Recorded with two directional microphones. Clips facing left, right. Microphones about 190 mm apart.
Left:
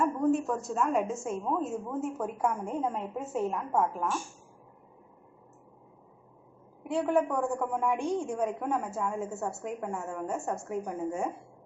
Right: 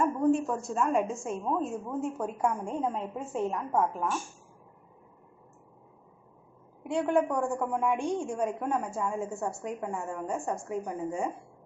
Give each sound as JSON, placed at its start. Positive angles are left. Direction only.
{"t": 0.0, "sound": "a sound", "side_deg": 0}
{"t": 0.7, "sound": "a woman's voice", "side_deg": 5}
{"t": 6.8, "sound": "a woman's voice", "side_deg": 5}